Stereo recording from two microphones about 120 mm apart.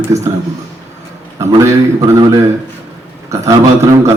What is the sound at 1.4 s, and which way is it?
Speech, 25° right (ahead or behind).